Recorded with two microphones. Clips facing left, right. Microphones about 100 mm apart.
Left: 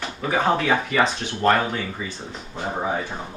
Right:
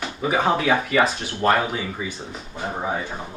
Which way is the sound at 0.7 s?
5° right (ahead or behind).